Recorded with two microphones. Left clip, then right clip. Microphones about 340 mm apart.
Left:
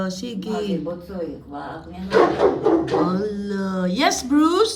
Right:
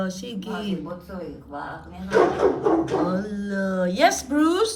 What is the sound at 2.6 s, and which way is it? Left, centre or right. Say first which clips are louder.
Speech: left 3 dB; centre.